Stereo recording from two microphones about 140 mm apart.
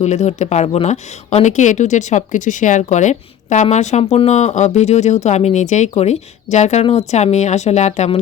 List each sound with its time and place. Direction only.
0.0 s speech: 55° left (ahead or behind)